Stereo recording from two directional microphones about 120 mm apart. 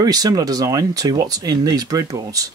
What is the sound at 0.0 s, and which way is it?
Speech, 30° right (ahead or behind).